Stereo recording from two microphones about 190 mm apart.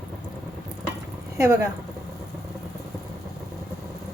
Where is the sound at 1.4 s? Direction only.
15° right (ahead or behind).